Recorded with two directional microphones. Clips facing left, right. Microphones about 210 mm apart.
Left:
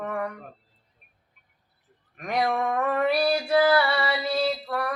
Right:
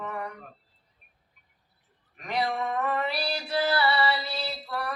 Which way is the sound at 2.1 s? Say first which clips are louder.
Left 4 dB; 55° left (ahead or behind).